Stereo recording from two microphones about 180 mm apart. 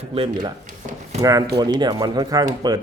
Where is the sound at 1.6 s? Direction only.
25° right (ahead or behind).